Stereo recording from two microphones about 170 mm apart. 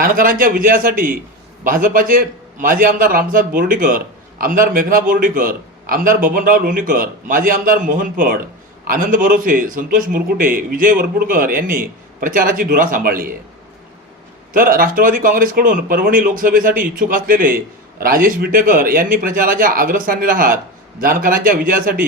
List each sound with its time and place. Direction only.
0.0 s a man's voice: 55° right (ahead or behind)
14.5 s a man's voice: 55° right (ahead or behind)